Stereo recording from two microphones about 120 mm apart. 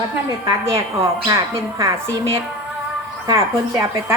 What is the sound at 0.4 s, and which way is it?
A woman's voice, 25° right (ahead or behind).